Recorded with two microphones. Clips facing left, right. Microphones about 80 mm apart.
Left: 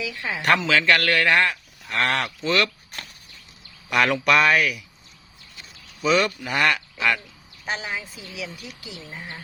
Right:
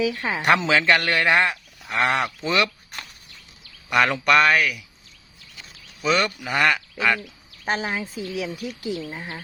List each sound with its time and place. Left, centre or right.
0.0 s a woman's voice: right
0.4 s a man's voice: centre
3.8 s speech: centre
6.0 s speech: centre
7.6 s speech: right